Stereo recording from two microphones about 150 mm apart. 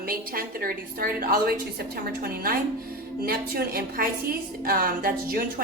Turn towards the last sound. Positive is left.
turn(degrees=-75)  # may be behind; listen again after turning